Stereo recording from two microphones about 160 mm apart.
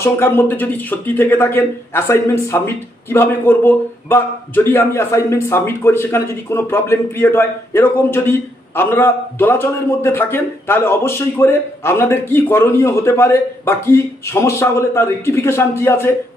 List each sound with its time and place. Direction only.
0.0 s a man's voice: 15° left (ahead or behind)